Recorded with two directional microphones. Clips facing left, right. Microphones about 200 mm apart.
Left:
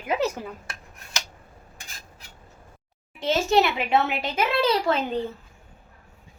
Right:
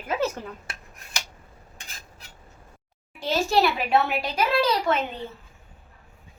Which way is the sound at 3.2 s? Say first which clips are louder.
Left 1 dB; 20° left (ahead or behind).